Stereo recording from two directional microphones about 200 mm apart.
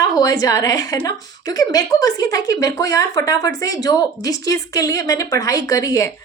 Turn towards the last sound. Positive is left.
turn(degrees=15)  # may be behind; listen again after turning